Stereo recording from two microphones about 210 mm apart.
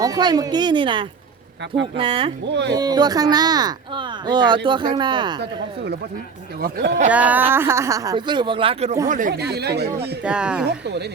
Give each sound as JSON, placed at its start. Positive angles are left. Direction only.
{"t": 0.0, "sound": "speech", "side_deg": -20}
{"t": 2.5, "sound": "speech", "side_deg": -55}
{"t": 2.7, "sound": "speech", "side_deg": -20}
{"t": 5.4, "sound": "speech", "side_deg": -55}
{"t": 7.1, "sound": "speech", "side_deg": -5}
{"t": 10.2, "sound": "speech", "side_deg": -5}
{"t": 10.7, "sound": "speech", "side_deg": -55}